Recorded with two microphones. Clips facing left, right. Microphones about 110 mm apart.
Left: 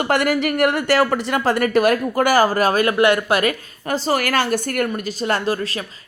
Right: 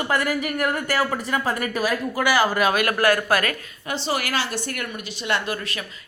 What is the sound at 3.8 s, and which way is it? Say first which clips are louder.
A woman's voice: left 6 dB; 45° left (ahead or behind).